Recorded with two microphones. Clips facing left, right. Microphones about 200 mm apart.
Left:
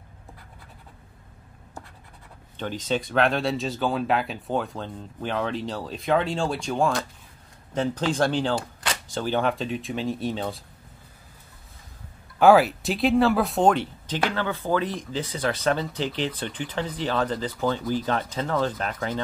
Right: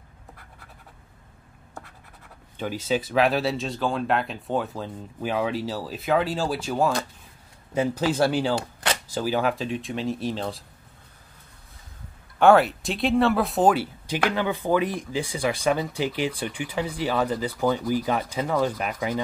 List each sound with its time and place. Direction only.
2.5 s speech: 10° right (ahead or behind)
12.4 s speech: centre (ahead or behind)